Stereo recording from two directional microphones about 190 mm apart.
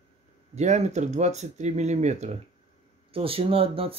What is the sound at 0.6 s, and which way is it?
Speech, 35° right (ahead or behind).